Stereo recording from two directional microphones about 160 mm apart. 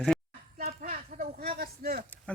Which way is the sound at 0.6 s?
65° right (ahead or behind).